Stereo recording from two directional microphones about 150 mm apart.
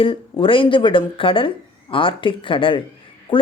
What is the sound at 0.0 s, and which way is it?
Speech, 35° left (ahead or behind).